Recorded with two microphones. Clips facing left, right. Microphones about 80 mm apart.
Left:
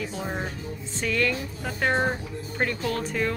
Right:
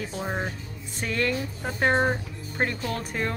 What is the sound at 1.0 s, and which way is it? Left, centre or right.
Speech, right.